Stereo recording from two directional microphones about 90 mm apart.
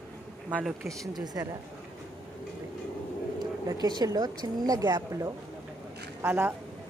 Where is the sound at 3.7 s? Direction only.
50° right (ahead or behind).